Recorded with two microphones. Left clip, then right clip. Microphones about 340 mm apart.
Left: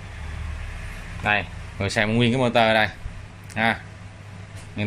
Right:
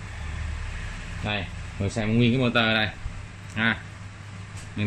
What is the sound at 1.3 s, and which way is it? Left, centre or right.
Speech, left.